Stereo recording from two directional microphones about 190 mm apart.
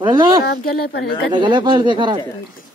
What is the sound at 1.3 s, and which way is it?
Speech, 25° right (ahead or behind).